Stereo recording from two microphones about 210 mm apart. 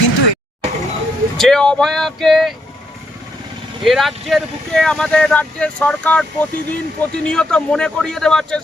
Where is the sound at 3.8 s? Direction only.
Centre (ahead or behind).